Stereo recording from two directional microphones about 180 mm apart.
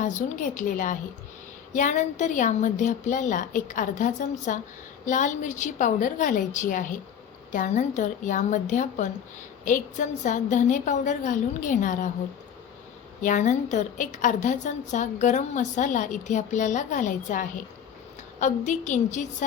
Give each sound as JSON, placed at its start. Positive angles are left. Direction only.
{"t": 0.0, "sound": "a woman's voice", "side_deg": 45}
{"t": 13.2, "sound": "a woman's voice", "side_deg": 40}